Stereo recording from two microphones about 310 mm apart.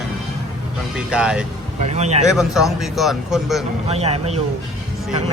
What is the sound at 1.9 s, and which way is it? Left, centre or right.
Speech, right.